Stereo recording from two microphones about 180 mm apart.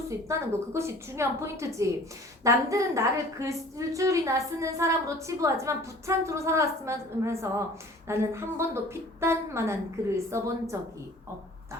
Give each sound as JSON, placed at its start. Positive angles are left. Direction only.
{"t": 0.1, "sound": "a woman's voice", "side_deg": -15}